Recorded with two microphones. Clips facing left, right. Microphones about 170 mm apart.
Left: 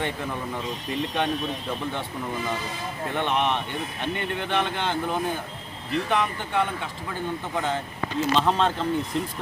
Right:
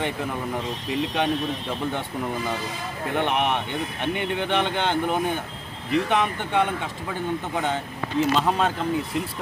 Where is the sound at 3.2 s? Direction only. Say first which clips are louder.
Right 1 dB; 15° right (ahead or behind).